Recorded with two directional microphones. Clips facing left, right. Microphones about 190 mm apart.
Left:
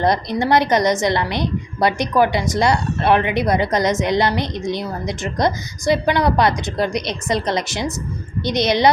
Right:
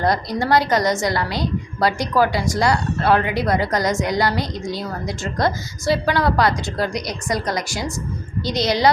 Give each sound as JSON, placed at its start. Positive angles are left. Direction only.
{"t": 0.0, "sound": "a woman's voice", "side_deg": 20}